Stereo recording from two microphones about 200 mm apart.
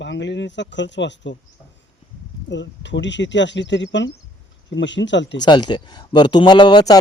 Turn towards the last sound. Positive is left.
turn(degrees=20)  # may be behind; listen again after turning